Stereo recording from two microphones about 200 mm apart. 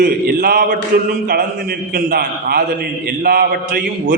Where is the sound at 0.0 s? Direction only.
50° right (ahead or behind).